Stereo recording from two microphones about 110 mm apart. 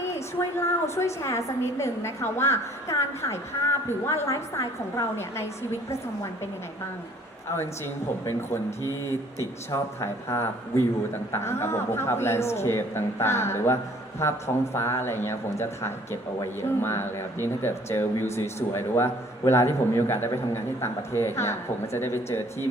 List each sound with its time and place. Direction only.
0.1 s speech: 25° left (ahead or behind)
8.2 s speech: 25° left (ahead or behind)